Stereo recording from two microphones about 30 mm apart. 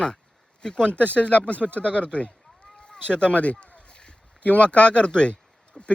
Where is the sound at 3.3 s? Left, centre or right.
Left.